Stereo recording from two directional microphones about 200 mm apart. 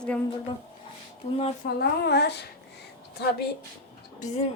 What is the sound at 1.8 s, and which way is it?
Speech, 55° left (ahead or behind).